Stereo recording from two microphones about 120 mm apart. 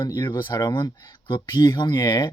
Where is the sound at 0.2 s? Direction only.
40° left (ahead or behind).